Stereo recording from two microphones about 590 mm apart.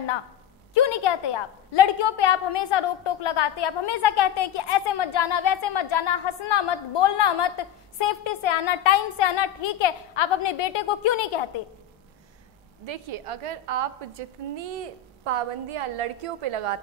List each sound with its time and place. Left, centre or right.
0.7 s a woman's voice: left
12.8 s a woman's voice: right